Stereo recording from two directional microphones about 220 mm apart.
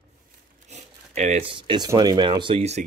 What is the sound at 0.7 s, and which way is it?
Speech, 30° right (ahead or behind).